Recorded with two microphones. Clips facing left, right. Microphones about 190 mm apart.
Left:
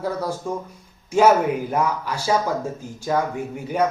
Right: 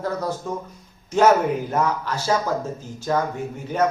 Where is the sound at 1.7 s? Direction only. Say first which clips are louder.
Even; 10° left (ahead or behind).